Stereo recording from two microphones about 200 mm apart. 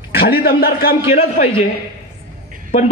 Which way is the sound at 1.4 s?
40° left (ahead or behind).